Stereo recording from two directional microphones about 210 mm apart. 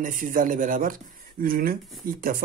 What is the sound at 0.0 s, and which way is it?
A man's voice, 40° right (ahead or behind).